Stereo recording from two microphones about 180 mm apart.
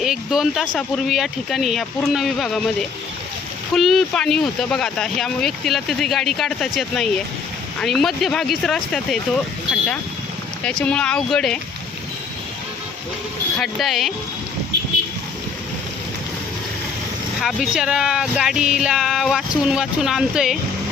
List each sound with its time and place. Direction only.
0.0 s speech: 5° right (ahead or behind)
3.8 s speech: centre (ahead or behind)
10.6 s speech: 5° left (ahead or behind)
13.6 s speech: centre (ahead or behind)
17.4 s speech: centre (ahead or behind)